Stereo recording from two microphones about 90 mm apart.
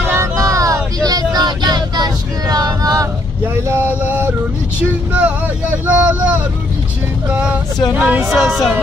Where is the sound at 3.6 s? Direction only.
25° right (ahead or behind).